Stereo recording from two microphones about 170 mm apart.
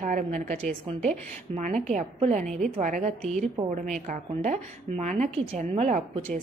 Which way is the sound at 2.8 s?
45° right (ahead or behind).